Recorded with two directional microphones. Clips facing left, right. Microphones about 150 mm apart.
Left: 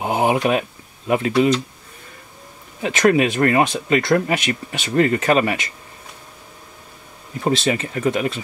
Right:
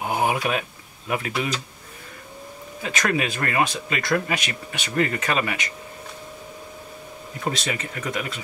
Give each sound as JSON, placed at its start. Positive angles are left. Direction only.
{"t": 0.0, "sound": "a sound", "side_deg": 25}
{"t": 1.0, "sound": "speech", "side_deg": 30}
{"t": 2.8, "sound": "speech", "side_deg": 25}
{"t": 7.4, "sound": "speech", "side_deg": 30}